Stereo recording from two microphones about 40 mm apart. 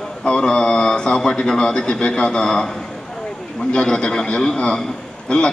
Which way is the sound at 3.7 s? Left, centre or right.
Centre.